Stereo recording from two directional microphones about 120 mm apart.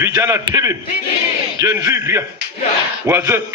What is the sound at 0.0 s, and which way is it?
A man's voice, 25° right (ahead or behind).